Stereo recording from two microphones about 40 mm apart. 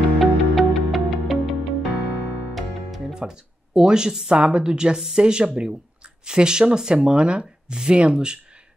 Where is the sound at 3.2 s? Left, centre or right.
Right.